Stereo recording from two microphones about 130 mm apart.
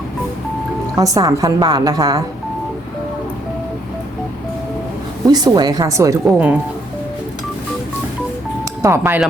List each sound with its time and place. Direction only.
0.9 s a woman's voice: 30° right (ahead or behind)
5.3 s a woman's voice: 30° right (ahead or behind)
8.8 s a woman's voice: 20° right (ahead or behind)